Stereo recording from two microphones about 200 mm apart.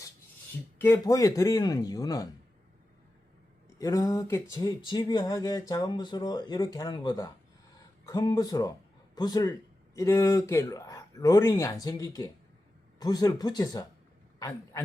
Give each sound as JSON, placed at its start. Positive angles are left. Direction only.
{"t": 0.8, "sound": "speech", "side_deg": 15}
{"t": 3.8, "sound": "a man's voice", "side_deg": 15}